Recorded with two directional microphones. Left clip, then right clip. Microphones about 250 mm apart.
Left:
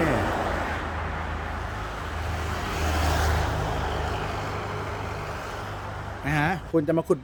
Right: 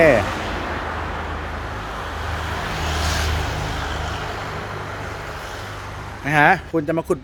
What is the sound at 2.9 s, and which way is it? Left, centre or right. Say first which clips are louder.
Vehicle: even; left.